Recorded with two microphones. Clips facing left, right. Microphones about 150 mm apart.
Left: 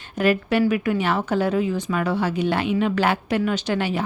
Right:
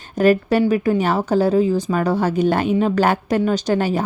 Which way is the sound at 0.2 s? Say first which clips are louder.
Right 4 dB; 40° right (ahead or behind).